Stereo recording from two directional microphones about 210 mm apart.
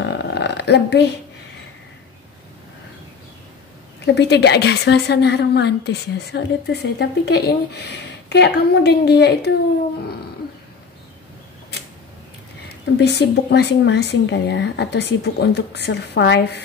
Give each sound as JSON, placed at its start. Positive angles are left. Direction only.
{"t": 0.0, "sound": "a sound", "side_deg": 55}
{"t": 4.0, "sound": "a woman's voice", "side_deg": 55}
{"t": 12.6, "sound": "speech", "side_deg": 55}